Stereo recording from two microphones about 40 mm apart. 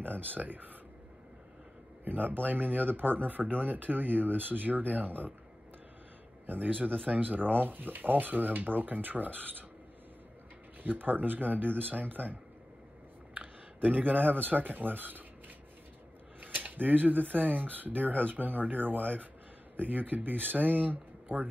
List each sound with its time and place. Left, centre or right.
0.0 s speech: right
2.0 s speech: right
6.4 s speech: right
10.8 s speech: right